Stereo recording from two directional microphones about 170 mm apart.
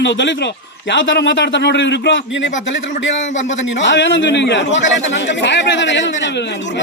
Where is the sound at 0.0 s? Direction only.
90° left.